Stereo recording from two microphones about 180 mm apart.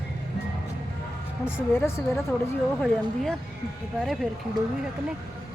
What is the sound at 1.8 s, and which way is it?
Speech, 15° left (ahead or behind).